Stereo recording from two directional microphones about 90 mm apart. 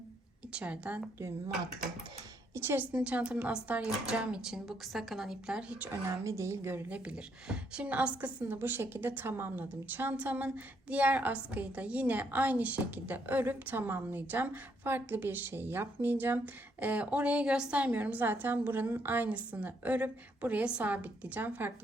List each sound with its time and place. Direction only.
0.5 s a woman's voice: 15° right (ahead or behind)
2.6 s a woman's voice: 25° right (ahead or behind)
2.9 s a woman's voice: 15° right (ahead or behind)
5.9 s a woman's voice: 35° right (ahead or behind)
6.9 s a woman's voice: 10° right (ahead or behind)